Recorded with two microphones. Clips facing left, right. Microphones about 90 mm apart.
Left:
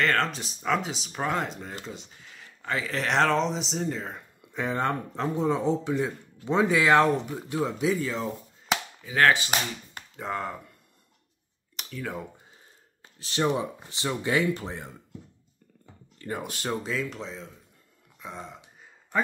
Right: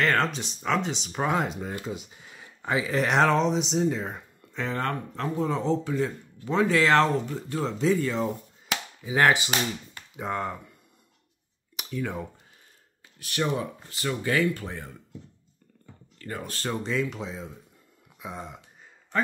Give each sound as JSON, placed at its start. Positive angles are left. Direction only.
{"t": 0.0, "sound": "speech", "side_deg": 0}
{"t": 4.5, "sound": "speech", "side_deg": 10}
{"t": 9.0, "sound": "cap gun", "side_deg": -20}
{"t": 10.1, "sound": "speech", "side_deg": 0}
{"t": 11.7, "sound": "speech", "side_deg": 0}
{"t": 13.2, "sound": "speech", "side_deg": 25}
{"t": 16.2, "sound": "speech", "side_deg": 15}
{"t": 16.8, "sound": "speech", "side_deg": 0}